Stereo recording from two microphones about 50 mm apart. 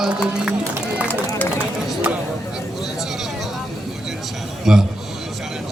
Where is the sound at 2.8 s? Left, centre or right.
Centre.